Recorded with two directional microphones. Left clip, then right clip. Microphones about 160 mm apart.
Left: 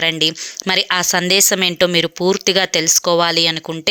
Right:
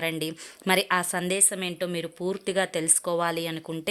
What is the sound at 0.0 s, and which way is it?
A woman's voice, 15° left (ahead or behind).